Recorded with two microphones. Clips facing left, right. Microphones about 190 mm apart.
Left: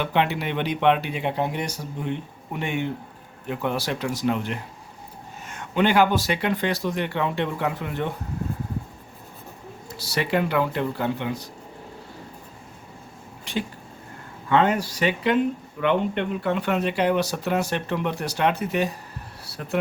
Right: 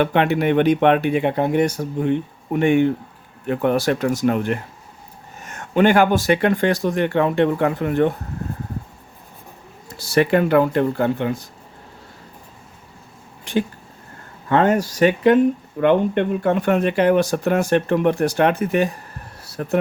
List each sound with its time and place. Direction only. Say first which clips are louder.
0.0 s speech: right 6 dB; 55° right (ahead or behind)
10.2 s speech: right 8 dB; 50° right (ahead or behind)
13.4 s a sound: right 7 dB; 50° right (ahead or behind)
14.5 s speech: right 4 dB; 45° right (ahead or behind)